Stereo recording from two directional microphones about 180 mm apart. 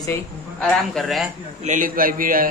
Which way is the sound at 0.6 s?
Centre (ahead or behind).